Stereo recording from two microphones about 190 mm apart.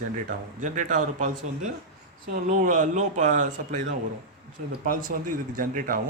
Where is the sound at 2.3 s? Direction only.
45° right (ahead or behind).